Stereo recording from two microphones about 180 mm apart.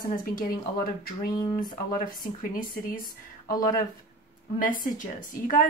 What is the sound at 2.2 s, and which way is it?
Speech, 50° left (ahead or behind).